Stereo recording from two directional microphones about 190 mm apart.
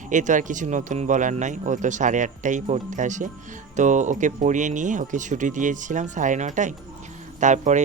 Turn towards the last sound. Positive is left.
turn(degrees=-40)  # may be behind; listen again after turning